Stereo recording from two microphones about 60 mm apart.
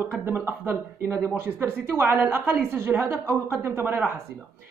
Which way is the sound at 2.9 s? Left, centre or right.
Centre.